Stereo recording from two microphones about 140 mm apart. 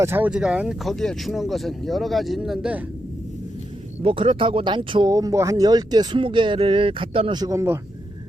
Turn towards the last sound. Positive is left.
turn(degrees=-20)  # may be behind; listen again after turning